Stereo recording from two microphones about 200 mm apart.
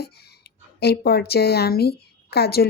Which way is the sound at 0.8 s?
55° left (ahead or behind).